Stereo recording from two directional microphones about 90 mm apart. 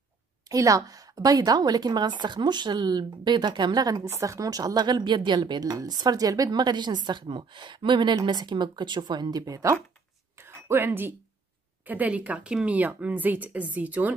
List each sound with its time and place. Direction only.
0.5 s a woman's voice: 40° right (ahead or behind)
4.0 s a woman's voice: 35° right (ahead or behind)
10.3 s a sound: 25° right (ahead or behind)
11.8 s speech: 20° right (ahead or behind)